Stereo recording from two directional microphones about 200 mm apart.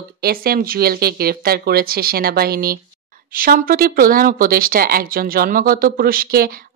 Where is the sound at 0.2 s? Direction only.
50° right (ahead or behind).